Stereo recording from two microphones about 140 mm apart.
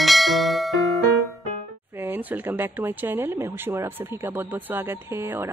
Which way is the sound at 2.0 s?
15° right (ahead or behind).